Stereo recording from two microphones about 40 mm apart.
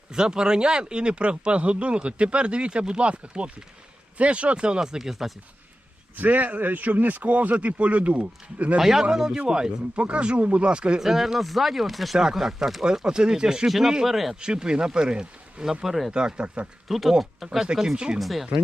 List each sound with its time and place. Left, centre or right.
0.1 s speech: centre
6.1 s a man's voice: right
8.8 s speech: centre
9.9 s speech: right
11.0 s speech: centre
13.1 s speech: centre
13.7 s speech: centre
14.3 s speech: right
15.8 s speech: centre
16.1 s speech: right
16.9 s speech: centre; by 18.2 s right
18.2 s speech: centre